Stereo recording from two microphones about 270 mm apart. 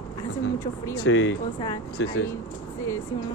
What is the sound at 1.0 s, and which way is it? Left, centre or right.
Speech, left.